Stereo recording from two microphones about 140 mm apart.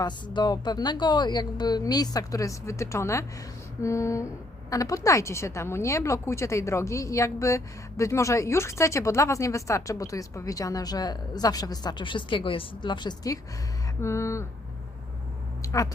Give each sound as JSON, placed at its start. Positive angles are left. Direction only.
{"t": 0.0, "sound": "a woman's voice", "side_deg": 30}
{"t": 15.6, "sound": "speech", "side_deg": 25}